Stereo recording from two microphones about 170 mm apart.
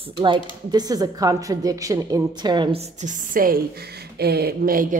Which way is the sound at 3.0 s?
50° right (ahead or behind).